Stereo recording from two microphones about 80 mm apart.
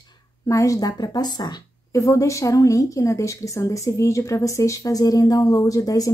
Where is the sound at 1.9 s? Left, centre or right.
Left.